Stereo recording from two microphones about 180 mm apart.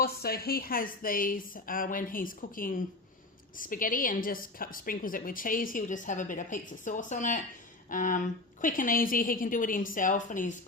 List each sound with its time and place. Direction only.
0.0 s a woman's voice: 60° left (ahead or behind)